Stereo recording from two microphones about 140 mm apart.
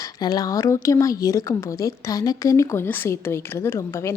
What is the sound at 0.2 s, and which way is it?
Speech, 30° left (ahead or behind).